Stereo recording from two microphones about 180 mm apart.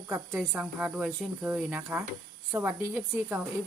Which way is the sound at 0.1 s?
10° right (ahead or behind).